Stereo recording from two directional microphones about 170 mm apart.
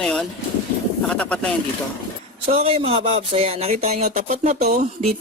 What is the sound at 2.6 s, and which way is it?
Speech, 35° right (ahead or behind).